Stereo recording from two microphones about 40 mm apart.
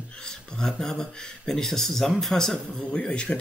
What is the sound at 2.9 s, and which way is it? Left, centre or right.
Speech, left.